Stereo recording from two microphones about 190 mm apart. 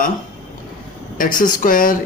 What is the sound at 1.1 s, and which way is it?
Speech, 45° left (ahead or behind).